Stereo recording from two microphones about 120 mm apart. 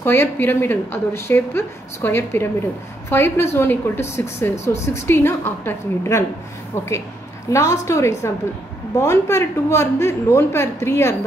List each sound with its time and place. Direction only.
0.0 s a woman's voice: 20° left (ahead or behind)
7.5 s a woman's voice: 25° left (ahead or behind)